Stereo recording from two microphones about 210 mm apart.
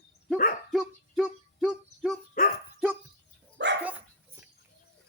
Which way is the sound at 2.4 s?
40° left (ahead or behind).